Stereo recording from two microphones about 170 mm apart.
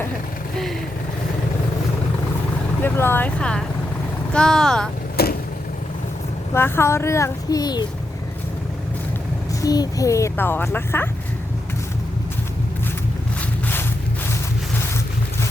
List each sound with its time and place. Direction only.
2.8 s a child's voice: 15° left (ahead or behind)
5.1 s vehicle: 65° left (ahead or behind)
6.5 s a child's voice: 15° left (ahead or behind)
9.6 s a child's voice: 20° left (ahead or behind)